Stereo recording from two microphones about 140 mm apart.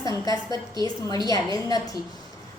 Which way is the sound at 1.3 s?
25° left (ahead or behind).